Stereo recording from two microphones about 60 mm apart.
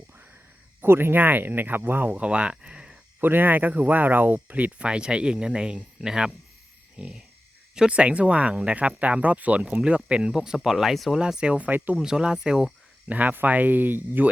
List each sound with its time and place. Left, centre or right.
0.8 s speech: right
2.1 s speech: centre
3.2 s speech: right; by 11.2 s centre
11.2 s speech: centre
11.9 s speech: centre
13.1 s speech: right